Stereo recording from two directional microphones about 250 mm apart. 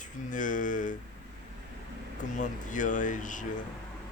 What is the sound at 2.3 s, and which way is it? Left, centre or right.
Speech, left.